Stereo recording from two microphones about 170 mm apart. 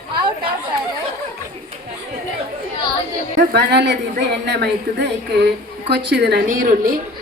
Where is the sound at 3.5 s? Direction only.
80° right.